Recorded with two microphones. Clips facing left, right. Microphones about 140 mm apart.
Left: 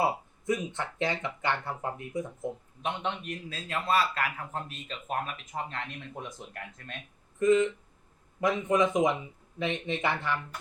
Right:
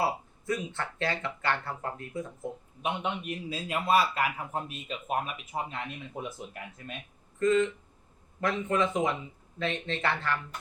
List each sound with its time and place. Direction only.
0.0 s speech: 20° left (ahead or behind)
2.8 s a man's voice: 10° right (ahead or behind)
7.3 s speech: 15° left (ahead or behind)